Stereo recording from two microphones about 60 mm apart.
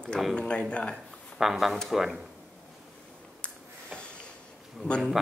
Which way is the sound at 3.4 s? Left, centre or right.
Centre.